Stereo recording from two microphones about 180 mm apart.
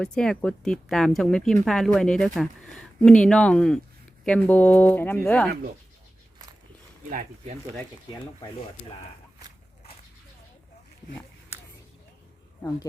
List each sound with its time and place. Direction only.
0.0 s speech: 5° left (ahead or behind)
7.1 s speech: 45° right (ahead or behind)